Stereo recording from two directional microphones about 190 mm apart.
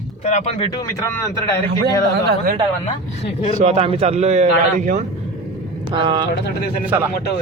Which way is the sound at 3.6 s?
30° right (ahead or behind).